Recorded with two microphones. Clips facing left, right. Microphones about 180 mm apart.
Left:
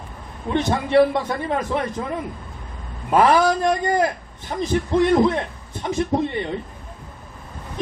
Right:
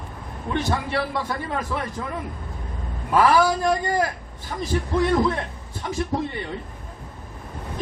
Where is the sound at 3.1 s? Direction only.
20° left (ahead or behind).